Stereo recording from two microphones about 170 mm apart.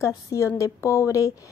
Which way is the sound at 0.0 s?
20° left (ahead or behind).